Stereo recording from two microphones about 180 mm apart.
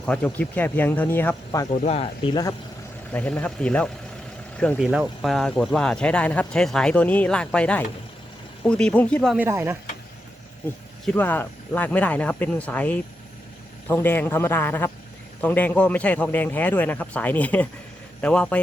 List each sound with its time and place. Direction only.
0.0 s speech: 5° left (ahead or behind)
1.9 s speech: 35° left (ahead or behind)
2.3 s speech: 20° left (ahead or behind)
3.1 s speech: 10° left (ahead or behind)
9.4 s speech: 15° right (ahead or behind)
11.0 s speech: 10° left (ahead or behind)